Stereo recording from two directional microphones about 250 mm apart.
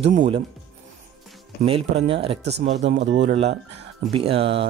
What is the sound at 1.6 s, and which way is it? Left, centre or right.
Speech, right.